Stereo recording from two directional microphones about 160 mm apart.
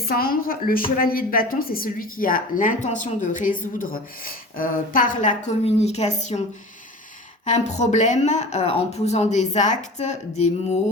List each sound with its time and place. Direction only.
0.0 s a woman's voice: 70° left (ahead or behind); by 6.4 s 45° left (ahead or behind)
7.4 s speech: 45° left (ahead or behind)